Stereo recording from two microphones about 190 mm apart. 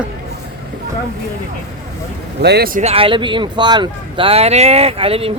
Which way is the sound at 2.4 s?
60° right (ahead or behind).